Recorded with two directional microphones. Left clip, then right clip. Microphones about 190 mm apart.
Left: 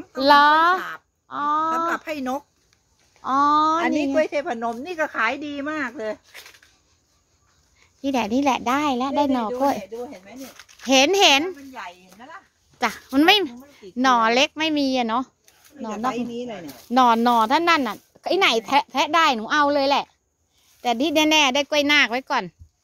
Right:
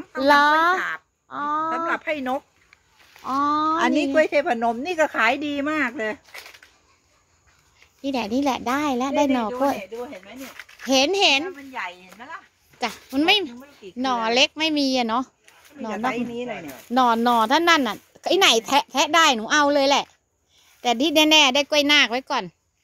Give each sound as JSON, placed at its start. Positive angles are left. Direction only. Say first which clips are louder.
{"t": 0.1, "sound": "a child's voice", "louder": "left 2 dB", "side_deg": 5}
{"t": 0.7, "sound": "speech", "louder": "right 3 dB", "side_deg": 30}
{"t": 1.3, "sound": "a sound", "louder": "left 3 dB", "side_deg": 10}
{"t": 1.9, "sound": "speech", "louder": "right 1 dB", "side_deg": 50}
{"t": 3.2, "sound": "speech", "louder": "left 4 dB", "side_deg": 10}
{"t": 3.8, "sound": "a woman's voice", "louder": "right 2 dB", "side_deg": -50}
{"t": 8.0, "sound": "a child's voice", "louder": "left 2 dB", "side_deg": 10}
{"t": 10.6, "sound": "a child's voice", "louder": "left 3 dB", "side_deg": 10}